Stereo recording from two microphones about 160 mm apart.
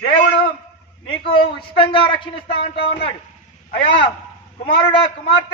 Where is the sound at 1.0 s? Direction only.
35° left (ahead or behind).